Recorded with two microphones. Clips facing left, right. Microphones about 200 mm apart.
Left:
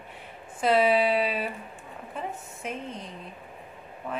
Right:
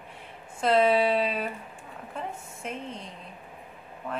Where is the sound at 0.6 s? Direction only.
5° left (ahead or behind).